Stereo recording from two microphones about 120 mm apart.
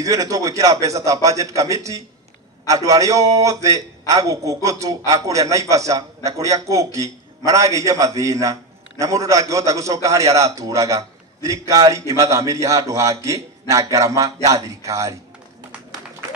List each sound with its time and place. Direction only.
0.0 s a man's voice: 30° right (ahead or behind)